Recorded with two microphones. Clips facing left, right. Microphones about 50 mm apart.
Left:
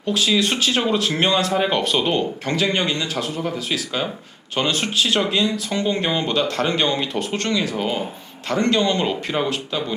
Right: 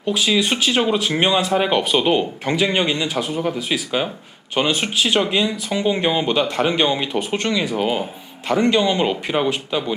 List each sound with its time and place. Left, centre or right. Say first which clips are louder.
0.0 s speech: right 1 dB; centre